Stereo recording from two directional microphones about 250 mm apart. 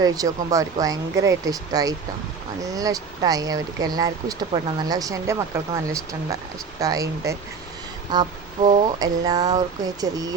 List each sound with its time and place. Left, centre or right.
0.0 s speech: centre